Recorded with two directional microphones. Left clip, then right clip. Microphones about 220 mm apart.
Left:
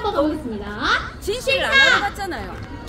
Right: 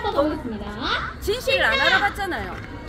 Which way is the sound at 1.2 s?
Centre (ahead or behind).